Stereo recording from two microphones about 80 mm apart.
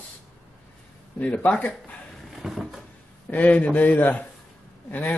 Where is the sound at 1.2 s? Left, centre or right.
Centre.